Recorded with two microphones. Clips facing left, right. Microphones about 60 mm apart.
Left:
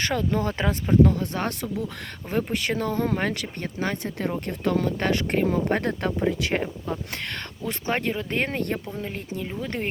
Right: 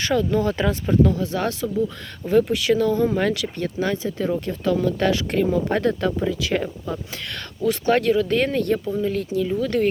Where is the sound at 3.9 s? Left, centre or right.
Left.